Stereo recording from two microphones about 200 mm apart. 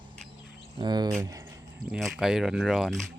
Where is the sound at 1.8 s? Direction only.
Centre (ahead or behind).